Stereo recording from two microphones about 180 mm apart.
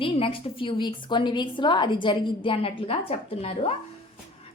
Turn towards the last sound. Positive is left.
turn(degrees=35)  # may be behind; listen again after turning